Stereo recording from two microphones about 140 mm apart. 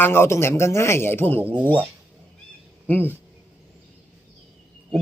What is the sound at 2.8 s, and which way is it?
Speech, 15° left (ahead or behind).